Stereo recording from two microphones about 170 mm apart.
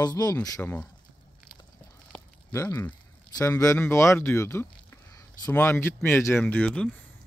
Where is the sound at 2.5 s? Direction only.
15° left (ahead or behind).